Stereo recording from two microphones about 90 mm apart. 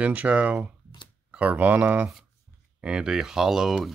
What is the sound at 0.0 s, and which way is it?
Speech, 15° right (ahead or behind).